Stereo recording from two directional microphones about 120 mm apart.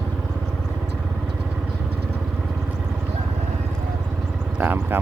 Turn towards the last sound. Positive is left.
turn(degrees=-15)  # may be behind; listen again after turning